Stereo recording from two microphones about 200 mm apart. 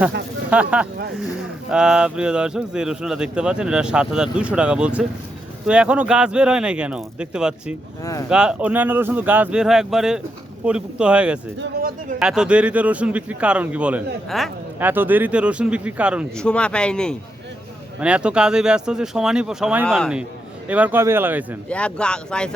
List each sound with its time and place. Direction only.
0.5 s speech: 5° right (ahead or behind)
11.6 s speech: 45° right (ahead or behind)
12.2 s speech: 5° right (ahead or behind)
14.8 s speech: 10° right (ahead or behind)
21.7 s speech: 5° left (ahead or behind)